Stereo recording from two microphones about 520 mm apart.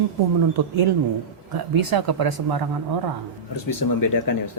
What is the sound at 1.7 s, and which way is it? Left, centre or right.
Speech, right.